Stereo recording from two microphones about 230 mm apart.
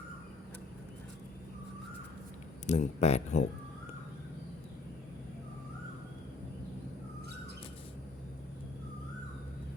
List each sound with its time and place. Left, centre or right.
2.6 s speech: left